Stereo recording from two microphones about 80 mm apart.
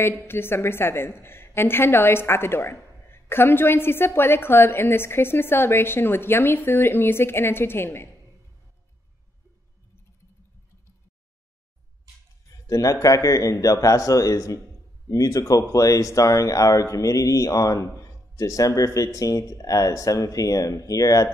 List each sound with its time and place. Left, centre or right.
0.0 s a woman's voice: left
12.6 s speech: left